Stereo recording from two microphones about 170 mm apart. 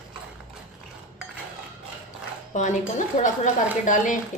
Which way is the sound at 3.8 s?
50° left (ahead or behind).